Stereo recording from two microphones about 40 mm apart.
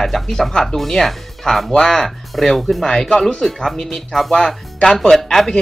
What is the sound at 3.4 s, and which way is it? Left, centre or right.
Speech, centre.